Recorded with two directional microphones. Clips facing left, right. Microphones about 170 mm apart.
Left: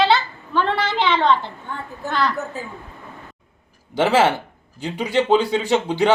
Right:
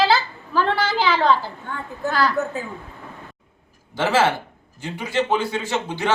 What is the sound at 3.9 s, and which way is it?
A man's voice, 15° left (ahead or behind).